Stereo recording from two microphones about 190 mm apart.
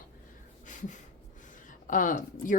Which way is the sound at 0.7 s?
40° left (ahead or behind).